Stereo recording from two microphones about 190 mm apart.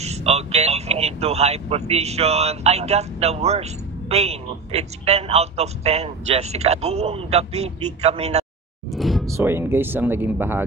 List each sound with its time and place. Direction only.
0.0 s speech: 35° right (ahead or behind)
8.9 s music: centre (ahead or behind)
9.3 s speech: 10° right (ahead or behind)